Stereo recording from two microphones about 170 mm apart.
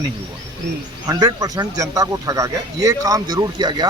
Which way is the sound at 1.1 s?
20° right (ahead or behind).